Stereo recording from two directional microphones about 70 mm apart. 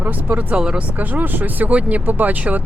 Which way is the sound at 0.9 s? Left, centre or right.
Right.